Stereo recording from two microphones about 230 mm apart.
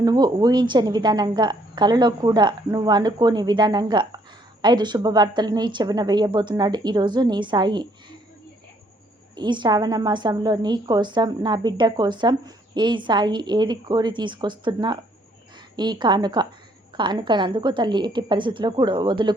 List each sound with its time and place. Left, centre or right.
0.0 s a woman's voice: centre
9.3 s a woman's voice: centre